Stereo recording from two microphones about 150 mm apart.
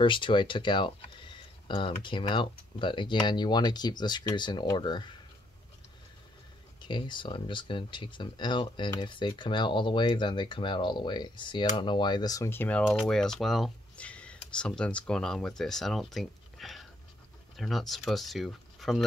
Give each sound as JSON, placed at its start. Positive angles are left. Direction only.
{"t": 0.0, "sound": "speech", "side_deg": 35}
{"t": 6.8, "sound": "speech", "side_deg": 30}